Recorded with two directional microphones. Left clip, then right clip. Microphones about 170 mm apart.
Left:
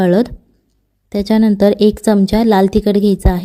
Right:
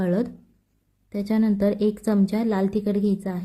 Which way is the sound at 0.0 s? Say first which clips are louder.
Left 12 dB; 50° left (ahead or behind).